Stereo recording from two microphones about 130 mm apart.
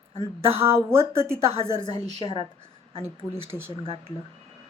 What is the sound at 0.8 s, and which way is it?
Speech, 20° right (ahead or behind).